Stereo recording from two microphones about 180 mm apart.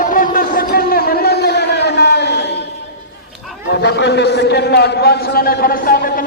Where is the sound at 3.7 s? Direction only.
70° left (ahead or behind).